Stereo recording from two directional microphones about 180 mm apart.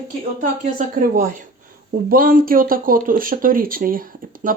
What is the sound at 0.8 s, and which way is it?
Speech, 50° right (ahead or behind).